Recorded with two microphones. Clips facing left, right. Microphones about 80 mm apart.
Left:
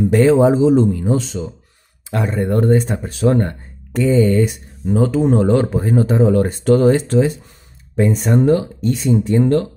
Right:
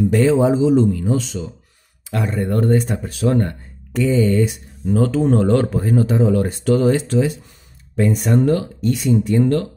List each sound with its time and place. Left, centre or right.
0.2 s speech: left
4.8 s speech: centre
5.9 s speech: left
7.9 s speech: left